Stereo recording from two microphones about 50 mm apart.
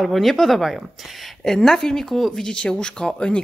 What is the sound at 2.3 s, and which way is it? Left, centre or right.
Speech, centre.